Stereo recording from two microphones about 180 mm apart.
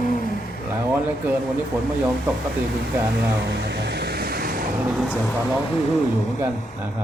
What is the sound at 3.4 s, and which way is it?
Vehicle, 70° right (ahead or behind).